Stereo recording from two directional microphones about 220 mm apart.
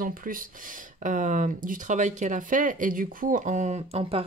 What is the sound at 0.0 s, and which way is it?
Speech, 40° right (ahead or behind).